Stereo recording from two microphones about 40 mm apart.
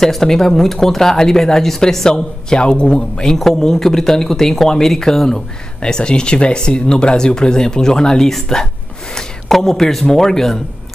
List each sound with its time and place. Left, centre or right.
0.0 s speech: centre
3.3 s speech: centre
5.8 s speech: left
9.1 s a sound: centre
10.1 s speech: centre